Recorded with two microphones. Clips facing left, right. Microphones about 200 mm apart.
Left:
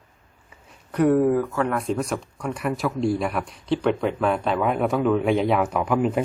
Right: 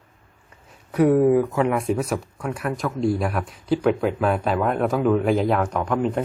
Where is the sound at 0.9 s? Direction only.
5° right (ahead or behind).